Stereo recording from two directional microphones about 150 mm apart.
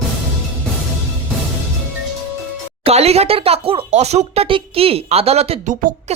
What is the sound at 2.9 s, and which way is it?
Speech, 45° right (ahead or behind).